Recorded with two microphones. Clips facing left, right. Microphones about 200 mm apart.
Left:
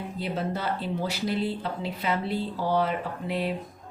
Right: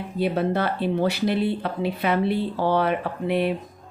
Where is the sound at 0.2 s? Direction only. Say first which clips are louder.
Right 8 dB; 65° right (ahead or behind).